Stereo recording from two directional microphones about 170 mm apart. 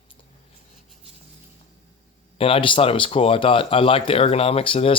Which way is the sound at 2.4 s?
35° left (ahead or behind).